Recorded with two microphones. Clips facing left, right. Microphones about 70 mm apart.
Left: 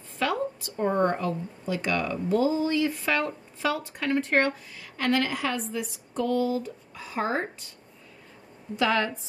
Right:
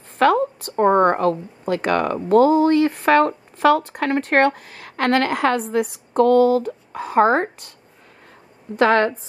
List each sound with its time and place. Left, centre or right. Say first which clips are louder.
0.2 s speech: right 11 dB; right
8.7 s a woman's voice: right 9 dB; right